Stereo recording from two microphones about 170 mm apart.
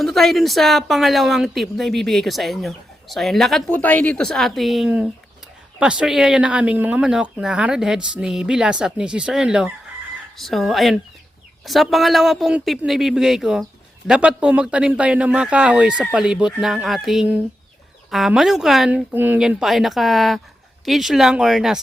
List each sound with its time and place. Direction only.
0.0 s a woman's voice: centre (ahead or behind)